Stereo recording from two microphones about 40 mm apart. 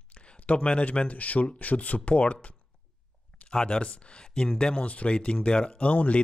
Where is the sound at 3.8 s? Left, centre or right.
Left.